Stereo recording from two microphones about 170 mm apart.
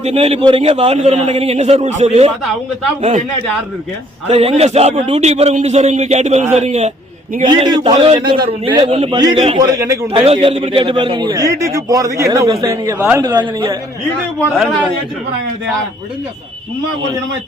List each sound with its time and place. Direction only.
0.0 s a man's voice: 35° right (ahead or behind)
4.3 s a man's voice: 35° right (ahead or behind)
7.4 s a man's voice: 25° right (ahead or behind)
10.1 s a man's voice: 35° right (ahead or behind)